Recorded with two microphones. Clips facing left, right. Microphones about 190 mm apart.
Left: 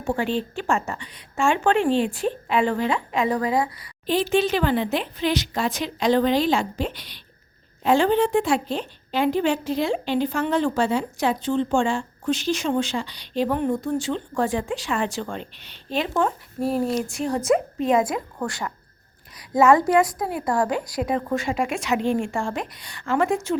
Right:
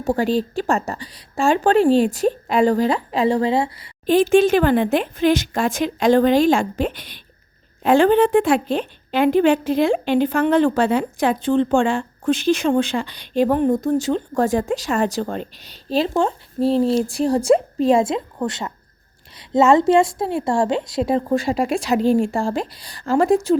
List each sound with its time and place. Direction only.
0.0 s speech: 40° right (ahead or behind)
4.0 s a woman's voice: 50° right (ahead or behind)